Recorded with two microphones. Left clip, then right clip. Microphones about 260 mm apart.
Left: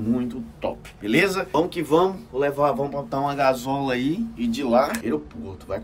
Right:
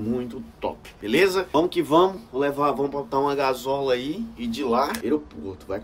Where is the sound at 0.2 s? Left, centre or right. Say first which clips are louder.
Left 1 dB; centre.